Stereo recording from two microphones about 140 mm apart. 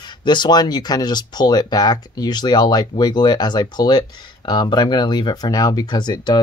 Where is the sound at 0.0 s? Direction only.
35° left (ahead or behind).